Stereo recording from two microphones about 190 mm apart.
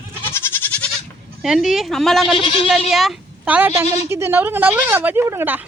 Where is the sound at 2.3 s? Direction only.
25° left (ahead or behind).